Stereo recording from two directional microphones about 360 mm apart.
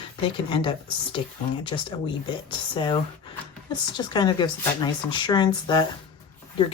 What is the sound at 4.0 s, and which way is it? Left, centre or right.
Speech, centre.